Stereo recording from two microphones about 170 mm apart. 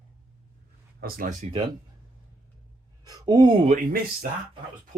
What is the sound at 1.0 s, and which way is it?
Speech, 60° right (ahead or behind).